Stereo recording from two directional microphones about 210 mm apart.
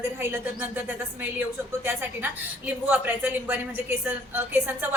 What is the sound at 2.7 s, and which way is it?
A woman's voice, 10° right (ahead or behind).